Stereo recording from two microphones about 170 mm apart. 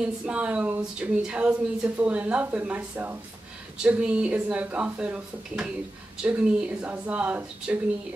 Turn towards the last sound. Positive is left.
turn(degrees=-10)  # may be behind; listen again after turning